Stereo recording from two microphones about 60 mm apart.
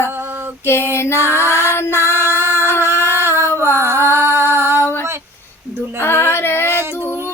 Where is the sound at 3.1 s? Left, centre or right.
Right.